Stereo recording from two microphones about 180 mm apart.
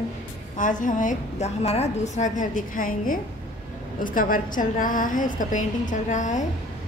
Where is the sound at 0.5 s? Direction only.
45° left (ahead or behind).